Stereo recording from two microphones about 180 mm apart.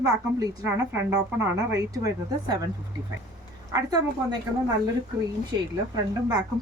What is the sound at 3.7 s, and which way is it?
Speech, 20° right (ahead or behind).